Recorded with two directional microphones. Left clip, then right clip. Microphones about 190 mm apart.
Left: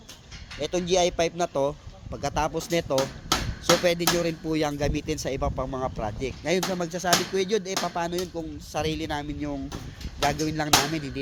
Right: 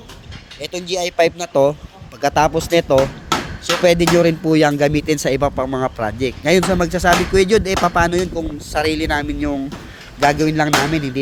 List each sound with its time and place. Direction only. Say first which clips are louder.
0.6 s speech: right 2 dB; 15° right (ahead or behind)
3.6 s speech: right 8 dB; 30° right (ahead or behind)